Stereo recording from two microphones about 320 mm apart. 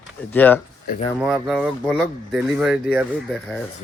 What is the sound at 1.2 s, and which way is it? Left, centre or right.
Speech, centre.